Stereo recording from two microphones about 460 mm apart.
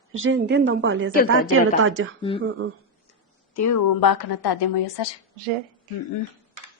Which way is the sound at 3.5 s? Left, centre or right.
Left.